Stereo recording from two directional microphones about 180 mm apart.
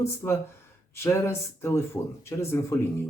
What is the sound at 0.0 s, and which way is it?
Speech, 15° left (ahead or behind).